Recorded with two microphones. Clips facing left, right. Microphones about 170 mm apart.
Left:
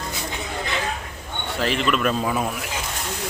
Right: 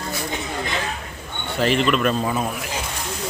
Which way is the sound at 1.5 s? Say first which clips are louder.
Right 3 dB; centre (ahead or behind).